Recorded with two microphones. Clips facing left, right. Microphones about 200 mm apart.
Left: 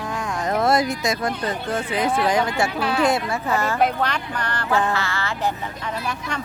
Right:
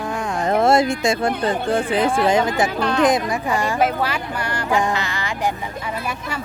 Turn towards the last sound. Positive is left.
turn(degrees=-15)  # may be behind; listen again after turning